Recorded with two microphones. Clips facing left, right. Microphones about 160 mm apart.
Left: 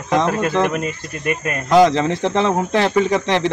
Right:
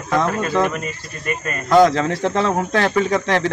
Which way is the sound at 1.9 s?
20° left (ahead or behind).